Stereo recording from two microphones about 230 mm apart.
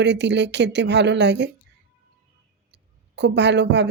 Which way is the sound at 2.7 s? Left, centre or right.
Right.